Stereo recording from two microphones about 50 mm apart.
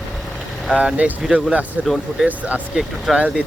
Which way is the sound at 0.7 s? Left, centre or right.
Right.